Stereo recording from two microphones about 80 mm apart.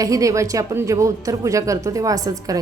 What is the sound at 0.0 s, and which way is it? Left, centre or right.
A woman's voice, right.